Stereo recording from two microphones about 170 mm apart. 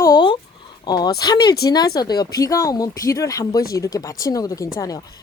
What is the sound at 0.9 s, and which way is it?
Speech, 25° left (ahead or behind).